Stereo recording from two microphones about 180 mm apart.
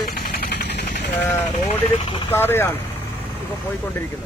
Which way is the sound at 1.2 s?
10° left (ahead or behind).